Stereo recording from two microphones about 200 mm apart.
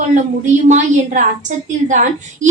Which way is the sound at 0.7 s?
40° right (ahead or behind).